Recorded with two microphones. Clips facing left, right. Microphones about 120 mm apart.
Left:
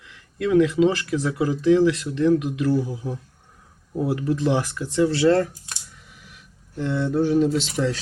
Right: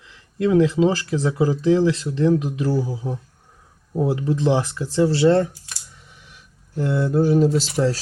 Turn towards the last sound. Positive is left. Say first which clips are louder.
# right 3 dB
turn(degrees=0)  # may be behind; listen again after turning